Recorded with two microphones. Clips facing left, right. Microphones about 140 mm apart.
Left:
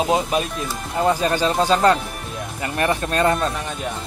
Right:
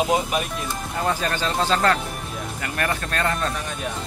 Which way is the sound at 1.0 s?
15° left (ahead or behind).